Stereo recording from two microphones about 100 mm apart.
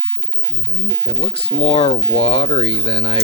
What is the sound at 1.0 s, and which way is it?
Speech, 70° left (ahead or behind).